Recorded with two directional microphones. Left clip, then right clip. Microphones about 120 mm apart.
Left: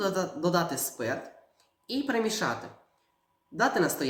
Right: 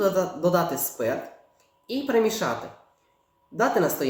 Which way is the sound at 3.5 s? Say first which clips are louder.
Right 4 dB; 15° right (ahead or behind).